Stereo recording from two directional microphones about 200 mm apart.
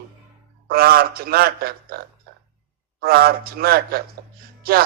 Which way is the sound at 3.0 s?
50° right (ahead or behind).